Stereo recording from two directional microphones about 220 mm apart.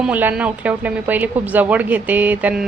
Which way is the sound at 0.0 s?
5° right (ahead or behind).